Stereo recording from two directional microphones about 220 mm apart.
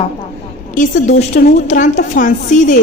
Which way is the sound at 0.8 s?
35° left (ahead or behind).